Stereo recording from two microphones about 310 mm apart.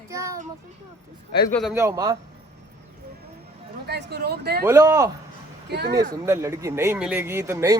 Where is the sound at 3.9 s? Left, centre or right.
Right.